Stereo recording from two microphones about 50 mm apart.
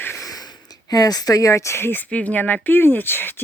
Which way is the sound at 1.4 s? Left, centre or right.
Left.